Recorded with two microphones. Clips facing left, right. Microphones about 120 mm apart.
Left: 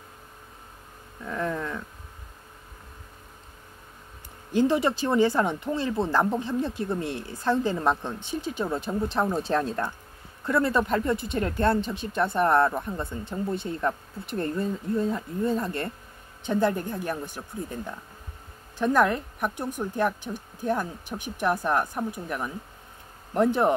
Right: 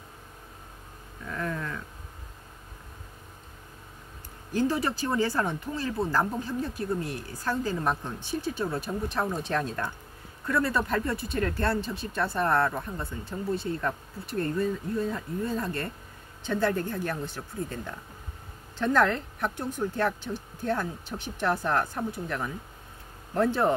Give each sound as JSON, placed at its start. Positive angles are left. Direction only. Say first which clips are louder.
{"t": 1.3, "sound": "a sound", "louder": "left 4 dB", "side_deg": 20}
{"t": 4.5, "sound": "speech", "louder": "left 4 dB", "side_deg": 20}
{"t": 9.3, "sound": "speech", "louder": "left 4 dB", "side_deg": 35}